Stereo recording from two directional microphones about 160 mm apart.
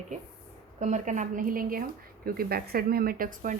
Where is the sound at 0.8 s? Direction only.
50° right (ahead or behind).